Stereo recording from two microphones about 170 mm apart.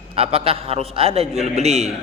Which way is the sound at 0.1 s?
35° right (ahead or behind).